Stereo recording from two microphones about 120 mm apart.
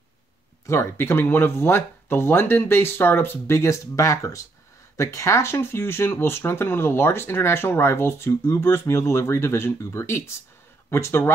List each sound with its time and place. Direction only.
0.7 s speech: 20° left (ahead or behind)